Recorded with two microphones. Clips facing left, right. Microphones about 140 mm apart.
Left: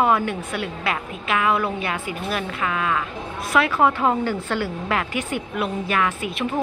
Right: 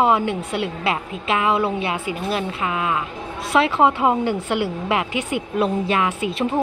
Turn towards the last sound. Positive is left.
turn(degrees=-25)  # may be behind; listen again after turning